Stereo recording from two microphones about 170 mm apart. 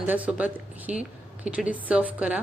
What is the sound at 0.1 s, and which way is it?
A woman's voice, 10° right (ahead or behind).